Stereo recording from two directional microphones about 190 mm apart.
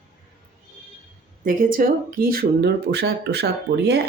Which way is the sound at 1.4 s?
45° right (ahead or behind).